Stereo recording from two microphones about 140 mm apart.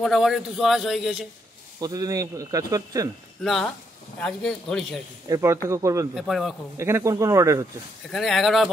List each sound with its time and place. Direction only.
0.0 s a man's voice: centre (ahead or behind)
1.8 s speech: 25° right (ahead or behind)
3.4 s a man's voice: 5° left (ahead or behind)
5.3 s speech: 20° right (ahead or behind)
6.1 s a man's voice: centre (ahead or behind)
6.8 s speech: 20° right (ahead or behind)
8.1 s a man's voice: centre (ahead or behind)